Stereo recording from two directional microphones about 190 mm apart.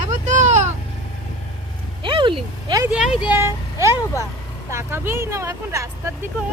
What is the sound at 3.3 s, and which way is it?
Vehicle, 15° right (ahead or behind).